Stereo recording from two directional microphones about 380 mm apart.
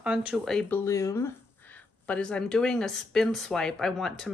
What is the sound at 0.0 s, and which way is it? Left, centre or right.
Speech, centre.